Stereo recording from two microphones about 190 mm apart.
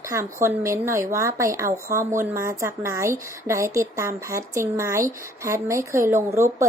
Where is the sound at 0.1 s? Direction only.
15° right (ahead or behind).